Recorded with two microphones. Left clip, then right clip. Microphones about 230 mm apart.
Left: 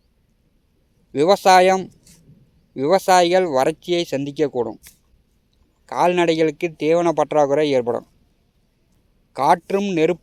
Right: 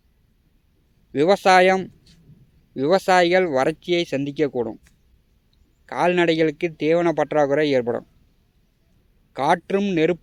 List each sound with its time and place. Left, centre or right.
1.1 s speech: left
9.3 s speech: centre